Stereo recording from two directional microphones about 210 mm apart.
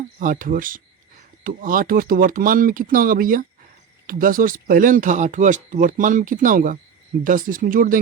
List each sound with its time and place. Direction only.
0.2 s speech: 40° right (ahead or behind)